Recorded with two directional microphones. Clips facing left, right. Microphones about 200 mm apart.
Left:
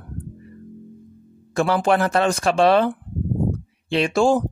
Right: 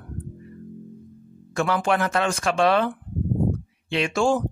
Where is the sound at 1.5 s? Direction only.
35° left (ahead or behind).